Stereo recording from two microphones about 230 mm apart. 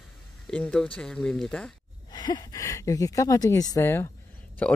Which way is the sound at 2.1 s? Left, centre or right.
Centre.